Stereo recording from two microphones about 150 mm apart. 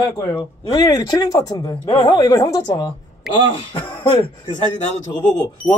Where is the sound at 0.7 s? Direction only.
25° left (ahead or behind).